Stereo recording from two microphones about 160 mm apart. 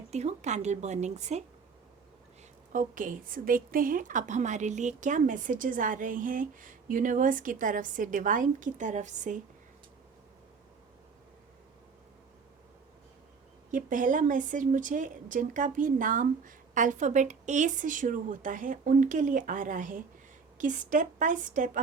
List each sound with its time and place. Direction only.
0.1 s speech: 45° right (ahead or behind)
2.7 s speech: 55° right (ahead or behind)
13.7 s speech: 55° right (ahead or behind)